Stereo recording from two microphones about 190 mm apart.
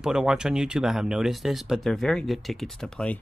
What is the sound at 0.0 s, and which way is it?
Speech, 5° right (ahead or behind).